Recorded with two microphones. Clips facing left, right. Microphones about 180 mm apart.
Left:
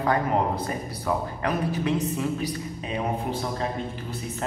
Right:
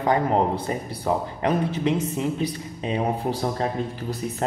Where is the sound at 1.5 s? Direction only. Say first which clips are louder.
Right 3 dB; 25° right (ahead or behind).